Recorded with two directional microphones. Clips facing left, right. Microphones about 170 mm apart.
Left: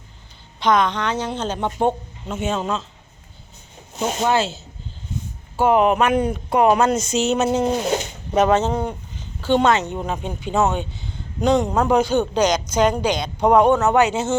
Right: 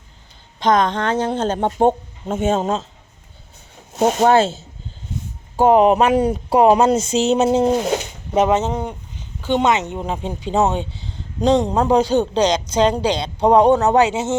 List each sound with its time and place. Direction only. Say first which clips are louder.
0.6 s speech: right 2 dB; 45° right (ahead or behind)
4.0 s speech: right 6 dB; 50° right (ahead or behind)
5.5 s speech: right 4 dB; 35° right (ahead or behind)
8.4 s speech: even; 20° right (ahead or behind); by 14.1 s 35° right (ahead or behind)
14.1 s speech: right 1 dB; 25° right (ahead or behind)